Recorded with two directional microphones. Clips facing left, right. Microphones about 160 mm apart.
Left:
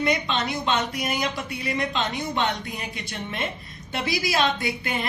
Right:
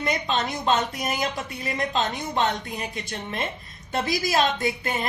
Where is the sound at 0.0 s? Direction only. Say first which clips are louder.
Left 1 dB; 40° right (ahead or behind).